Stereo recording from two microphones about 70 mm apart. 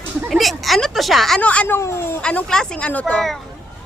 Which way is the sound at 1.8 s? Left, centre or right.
Left.